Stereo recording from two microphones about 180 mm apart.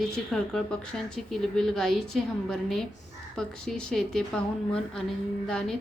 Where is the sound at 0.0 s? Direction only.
Centre (ahead or behind).